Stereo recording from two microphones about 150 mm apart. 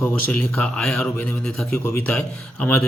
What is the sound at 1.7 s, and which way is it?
A man's voice, 15° left (ahead or behind).